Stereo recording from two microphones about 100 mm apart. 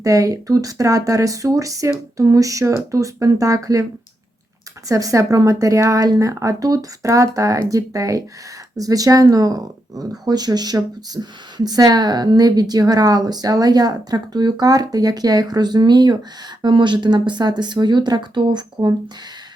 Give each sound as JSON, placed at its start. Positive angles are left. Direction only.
{"t": 0.0, "sound": "speech", "side_deg": -35}
{"t": 4.9, "sound": "speech", "side_deg": -35}